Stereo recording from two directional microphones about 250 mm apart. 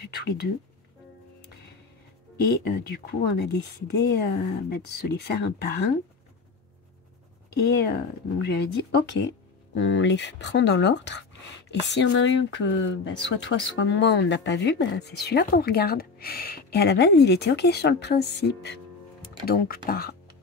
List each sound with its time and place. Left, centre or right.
0.0 s a sound: left
2.5 s speech: left
7.5 s speech: left